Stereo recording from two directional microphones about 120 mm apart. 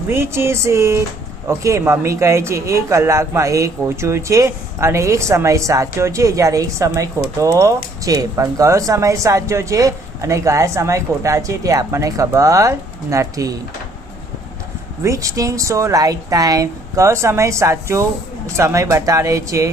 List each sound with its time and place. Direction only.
0.1 s speech: 20° right (ahead or behind)
15.0 s speech: 25° right (ahead or behind)